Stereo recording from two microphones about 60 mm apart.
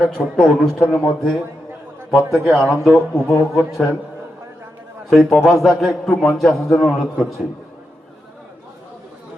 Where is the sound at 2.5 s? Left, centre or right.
Centre.